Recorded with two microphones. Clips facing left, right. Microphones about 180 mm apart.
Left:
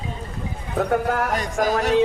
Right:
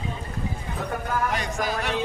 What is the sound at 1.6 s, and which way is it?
Speech, 40° left (ahead or behind).